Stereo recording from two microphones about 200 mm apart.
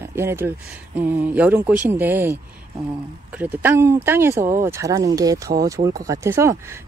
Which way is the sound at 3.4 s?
10° right (ahead or behind).